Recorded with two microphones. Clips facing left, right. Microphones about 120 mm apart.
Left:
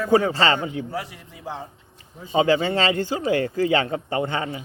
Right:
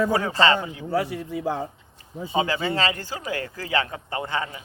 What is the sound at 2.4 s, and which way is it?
Speech, 30° left (ahead or behind).